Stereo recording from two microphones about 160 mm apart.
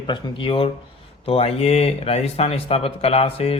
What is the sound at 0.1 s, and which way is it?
Speech, 35° left (ahead or behind).